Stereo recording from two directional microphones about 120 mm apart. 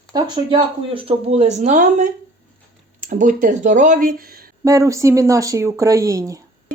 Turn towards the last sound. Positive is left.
turn(degrees=-30)  # may be behind; listen again after turning